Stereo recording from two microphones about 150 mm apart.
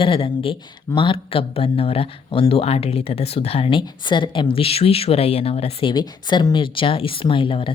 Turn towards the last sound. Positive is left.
turn(degrees=35)  # may be behind; listen again after turning